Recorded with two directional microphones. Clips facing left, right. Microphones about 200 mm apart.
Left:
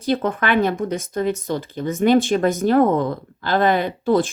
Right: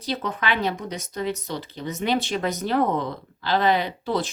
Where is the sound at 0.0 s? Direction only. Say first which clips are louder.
Left 7 dB; 50° left (ahead or behind).